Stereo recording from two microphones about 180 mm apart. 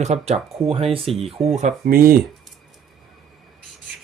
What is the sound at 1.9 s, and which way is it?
Speech, 55° right (ahead or behind).